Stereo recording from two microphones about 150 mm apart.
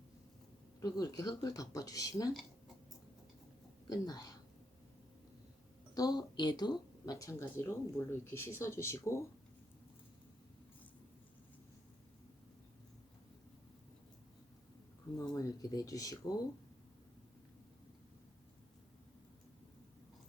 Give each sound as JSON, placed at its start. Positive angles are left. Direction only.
{"t": 0.8, "sound": "speech", "side_deg": 25}
{"t": 3.8, "sound": "speech", "side_deg": 25}
{"t": 5.9, "sound": "speech", "side_deg": 25}
{"t": 15.2, "sound": "speech", "side_deg": 25}